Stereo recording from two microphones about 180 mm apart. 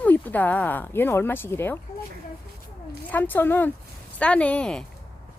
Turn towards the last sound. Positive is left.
turn(degrees=5)  # may be behind; listen again after turning